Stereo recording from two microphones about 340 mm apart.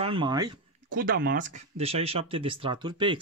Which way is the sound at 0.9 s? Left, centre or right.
Right.